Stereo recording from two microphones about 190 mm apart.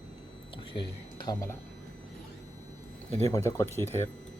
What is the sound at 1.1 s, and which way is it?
Speech, 20° left (ahead or behind).